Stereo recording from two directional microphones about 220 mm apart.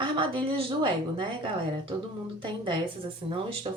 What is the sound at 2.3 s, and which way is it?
Speech, 20° right (ahead or behind).